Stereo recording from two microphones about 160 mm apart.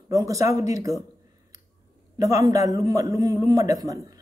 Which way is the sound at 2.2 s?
20° right (ahead or behind).